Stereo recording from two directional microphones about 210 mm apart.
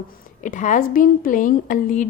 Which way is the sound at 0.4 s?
35° left (ahead or behind).